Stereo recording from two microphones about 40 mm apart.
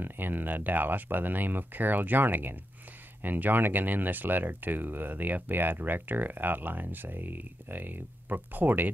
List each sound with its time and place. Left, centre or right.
0.0 s speech: right